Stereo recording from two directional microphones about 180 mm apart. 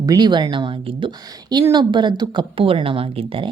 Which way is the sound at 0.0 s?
20° right (ahead or behind).